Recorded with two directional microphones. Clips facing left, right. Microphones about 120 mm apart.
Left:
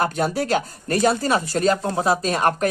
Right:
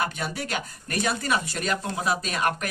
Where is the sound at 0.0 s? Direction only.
35° left (ahead or behind).